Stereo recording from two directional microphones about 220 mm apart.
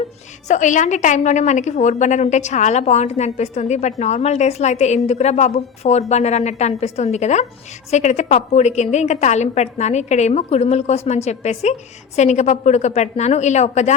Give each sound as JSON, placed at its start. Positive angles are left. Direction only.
{"t": 0.4, "sound": "a woman's voice", "side_deg": 35}